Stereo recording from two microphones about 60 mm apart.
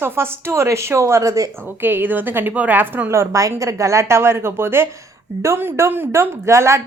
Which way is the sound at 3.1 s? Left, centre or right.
Right.